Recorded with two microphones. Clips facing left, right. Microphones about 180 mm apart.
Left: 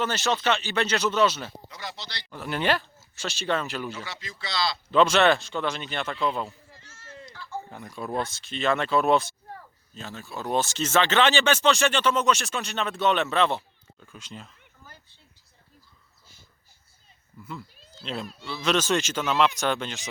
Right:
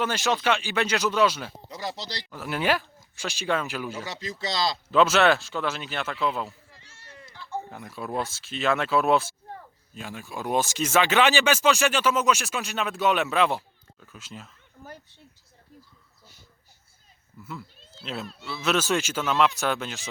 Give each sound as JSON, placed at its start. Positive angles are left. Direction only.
{"t": 0.0, "sound": "speech", "side_deg": -10}
{"t": 1.7, "sound": "a man's voice", "side_deg": -35}
{"t": 2.3, "sound": "speech", "side_deg": -5}
{"t": 4.0, "sound": "a man's voice", "side_deg": -40}
{"t": 4.9, "sound": "speech", "side_deg": -5}
{"t": 7.7, "sound": "speech", "side_deg": -5}
{"t": 17.4, "sound": "speech", "side_deg": -5}